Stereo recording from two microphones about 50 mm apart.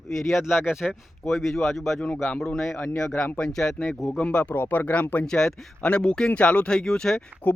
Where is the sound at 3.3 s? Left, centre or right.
Centre.